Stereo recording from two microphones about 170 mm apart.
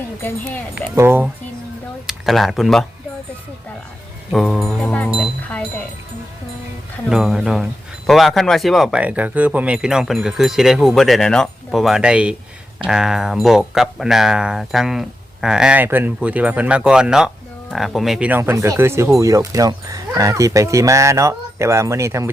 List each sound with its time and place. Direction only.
0.2 s speech: 10° left (ahead or behind)
0.9 s speech: 15° right (ahead or behind)
2.0 s speech: centre (ahead or behind)
4.3 s speech: centre (ahead or behind)
7.1 s speech: 5° right (ahead or behind)